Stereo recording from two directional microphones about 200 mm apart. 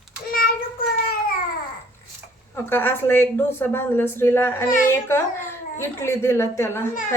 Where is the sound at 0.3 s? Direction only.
45° left (ahead or behind).